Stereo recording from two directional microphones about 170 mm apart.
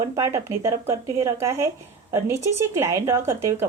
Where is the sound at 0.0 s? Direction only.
15° right (ahead or behind).